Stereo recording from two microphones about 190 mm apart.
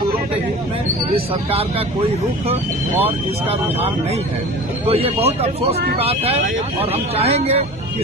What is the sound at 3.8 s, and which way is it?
Speech, 35° right (ahead or behind).